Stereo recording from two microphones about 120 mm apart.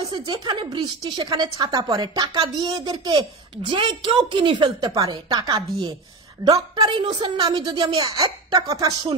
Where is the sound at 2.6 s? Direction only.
50° right (ahead or behind).